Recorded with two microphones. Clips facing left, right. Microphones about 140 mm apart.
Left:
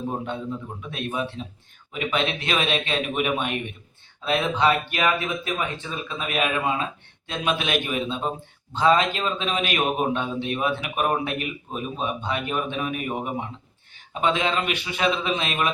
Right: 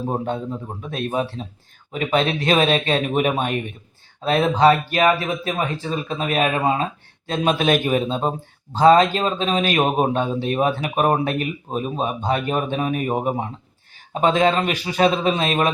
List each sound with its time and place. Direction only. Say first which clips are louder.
0.0 s speech: right 5 dB; 35° right (ahead or behind)